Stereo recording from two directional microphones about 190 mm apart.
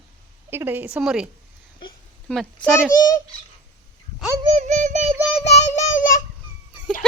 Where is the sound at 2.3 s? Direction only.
5° left (ahead or behind).